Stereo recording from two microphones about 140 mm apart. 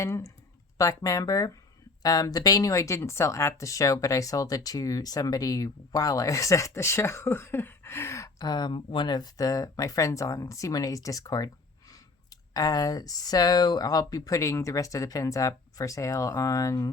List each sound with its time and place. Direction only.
0.0 s speech: 20° left (ahead or behind)